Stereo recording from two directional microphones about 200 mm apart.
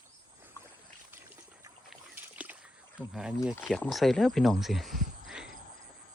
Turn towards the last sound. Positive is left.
turn(degrees=0)  # may be behind; listen again after turning